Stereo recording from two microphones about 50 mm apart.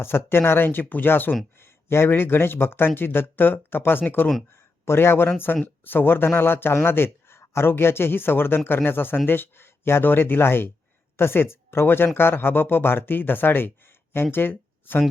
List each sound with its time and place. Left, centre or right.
0.0 s a man's voice: left
1.5 s a man's voice: left